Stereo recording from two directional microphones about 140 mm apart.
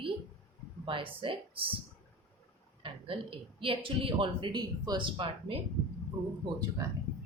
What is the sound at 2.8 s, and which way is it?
Speech, 40° right (ahead or behind).